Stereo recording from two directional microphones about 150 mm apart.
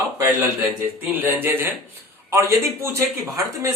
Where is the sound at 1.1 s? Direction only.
15° right (ahead or behind).